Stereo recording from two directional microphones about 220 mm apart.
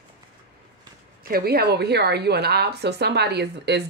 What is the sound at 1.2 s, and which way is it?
A woman's voice, 45° right (ahead or behind).